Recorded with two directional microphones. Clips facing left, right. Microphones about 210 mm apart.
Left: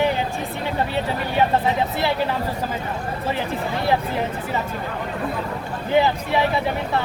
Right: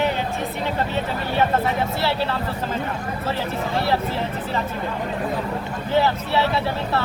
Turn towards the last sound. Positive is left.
turn(degrees=15)  # may be behind; listen again after turning